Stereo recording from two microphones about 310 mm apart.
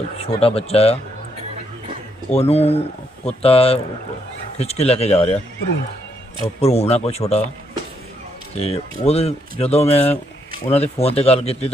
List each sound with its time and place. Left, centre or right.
0.3 s speech: centre
2.3 s speech: centre
6.4 s speech: centre
8.5 s speech: centre